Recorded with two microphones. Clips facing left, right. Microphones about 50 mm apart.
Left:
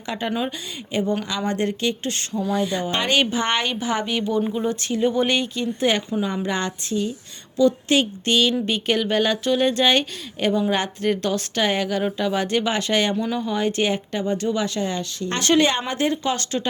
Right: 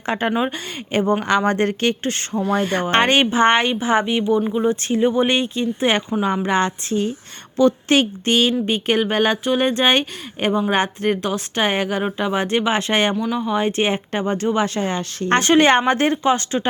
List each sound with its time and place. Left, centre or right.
0.1 s speech: right
2.4 s rub: right
3.1 s speech: right
11.2 s speech: centre
13.1 s speech: centre
13.4 s speech: right